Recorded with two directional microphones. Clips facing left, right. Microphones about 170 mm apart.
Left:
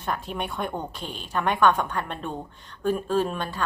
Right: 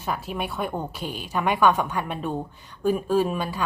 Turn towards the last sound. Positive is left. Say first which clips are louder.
# right 2 dB
turn(degrees=-10)  # may be behind; listen again after turning